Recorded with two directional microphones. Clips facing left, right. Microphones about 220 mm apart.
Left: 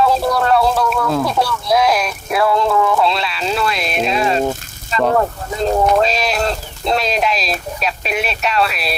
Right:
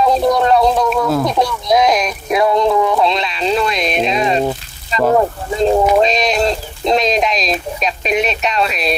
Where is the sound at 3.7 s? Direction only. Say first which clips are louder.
Right 3 dB; 5° left (ahead or behind).